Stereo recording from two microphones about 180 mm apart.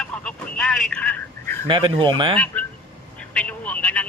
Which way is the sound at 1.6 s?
25° right (ahead or behind).